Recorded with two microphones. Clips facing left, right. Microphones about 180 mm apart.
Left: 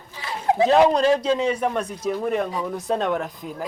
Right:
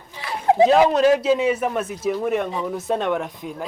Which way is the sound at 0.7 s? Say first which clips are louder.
Right 1 dB; 5° right (ahead or behind).